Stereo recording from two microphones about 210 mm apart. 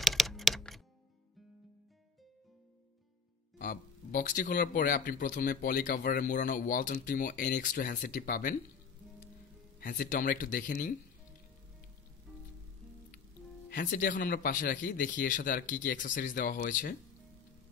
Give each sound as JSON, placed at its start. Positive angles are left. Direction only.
{"t": 0.0, "sound": "computer keyboard", "side_deg": 0}
{"t": 3.5, "sound": "speech", "side_deg": 40}
{"t": 9.8, "sound": "speech", "side_deg": 40}
{"t": 13.7, "sound": "speech", "side_deg": 40}